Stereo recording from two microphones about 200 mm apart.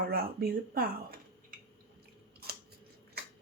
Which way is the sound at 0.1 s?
50° right (ahead or behind).